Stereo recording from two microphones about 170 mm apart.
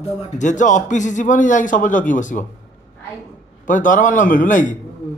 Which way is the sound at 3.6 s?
50° left (ahead or behind).